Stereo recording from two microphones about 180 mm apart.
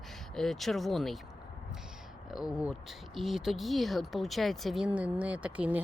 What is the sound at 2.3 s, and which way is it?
Speech, 5° right (ahead or behind).